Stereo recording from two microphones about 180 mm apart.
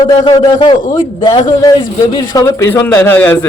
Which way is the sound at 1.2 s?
25° left (ahead or behind).